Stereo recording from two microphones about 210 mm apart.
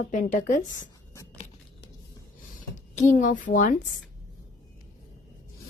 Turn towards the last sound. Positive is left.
turn(degrees=40)  # may be behind; listen again after turning